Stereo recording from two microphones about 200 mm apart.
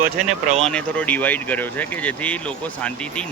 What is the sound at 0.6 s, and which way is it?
A man's voice, 5° left (ahead or behind).